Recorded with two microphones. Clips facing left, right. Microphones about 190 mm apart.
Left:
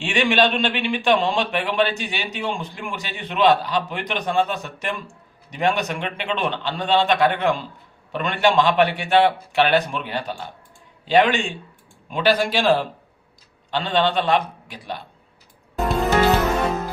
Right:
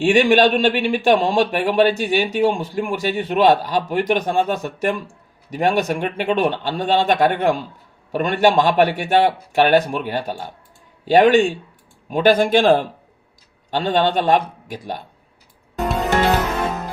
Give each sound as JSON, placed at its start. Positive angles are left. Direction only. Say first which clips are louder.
{"t": 0.0, "sound": "a man's voice", "louder": "right 6 dB", "side_deg": -45}